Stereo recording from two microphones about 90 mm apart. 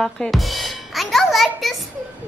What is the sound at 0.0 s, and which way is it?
Speech, centre (ahead or behind).